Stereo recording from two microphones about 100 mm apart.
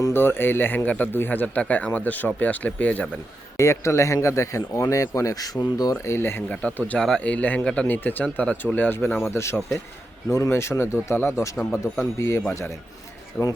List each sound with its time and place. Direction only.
0.0 s speech: 25° left (ahead or behind)
3.6 s speech: 30° left (ahead or behind)
6.5 s speech: 15° left (ahead or behind)
13.3 s speech: 10° left (ahead or behind)